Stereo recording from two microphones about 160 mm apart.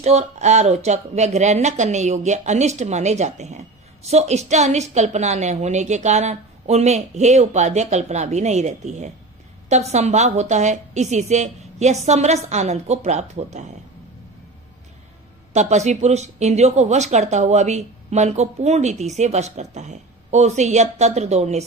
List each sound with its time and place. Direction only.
0.0 s speech: 45° right (ahead or behind)
15.5 s speech: 45° right (ahead or behind)